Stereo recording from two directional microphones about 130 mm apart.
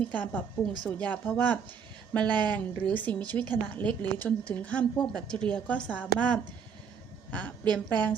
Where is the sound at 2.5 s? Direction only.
10° left (ahead or behind).